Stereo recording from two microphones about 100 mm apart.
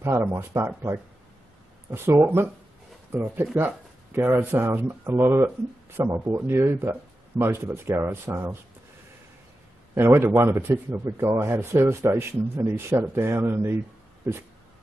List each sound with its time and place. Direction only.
0.0 s speech: 20° right (ahead or behind)
9.9 s speech: 20° right (ahead or behind)